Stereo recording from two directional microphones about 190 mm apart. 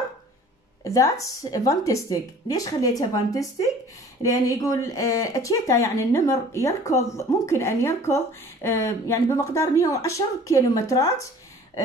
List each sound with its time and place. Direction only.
0.8 s a woman's voice: 15° left (ahead or behind)